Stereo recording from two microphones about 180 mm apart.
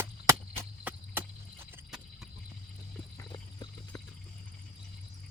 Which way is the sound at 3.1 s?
25° left (ahead or behind).